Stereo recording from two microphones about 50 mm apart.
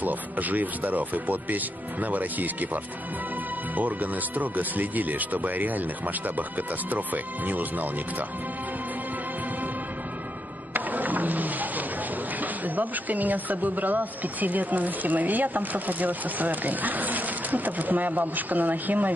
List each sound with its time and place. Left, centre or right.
0.0 s speech: right
10.7 s a sound: right
12.4 s speech: right